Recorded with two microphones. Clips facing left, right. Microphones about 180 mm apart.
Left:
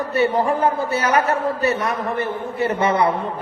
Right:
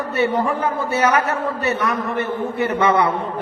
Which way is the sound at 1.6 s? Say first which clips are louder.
Even; 35° left (ahead or behind).